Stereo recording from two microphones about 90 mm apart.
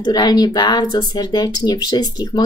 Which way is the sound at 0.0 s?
50° left (ahead or behind).